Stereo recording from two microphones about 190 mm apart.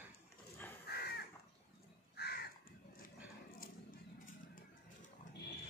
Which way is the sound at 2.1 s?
60° left (ahead or behind).